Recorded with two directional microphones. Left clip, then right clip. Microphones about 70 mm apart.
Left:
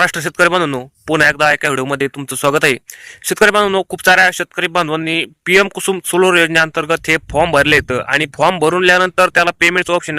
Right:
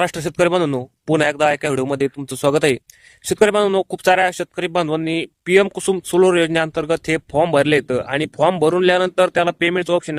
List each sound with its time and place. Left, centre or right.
0.0 s speech: centre